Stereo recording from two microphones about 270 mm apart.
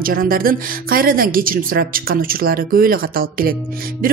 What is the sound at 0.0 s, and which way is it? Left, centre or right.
A woman's voice, right.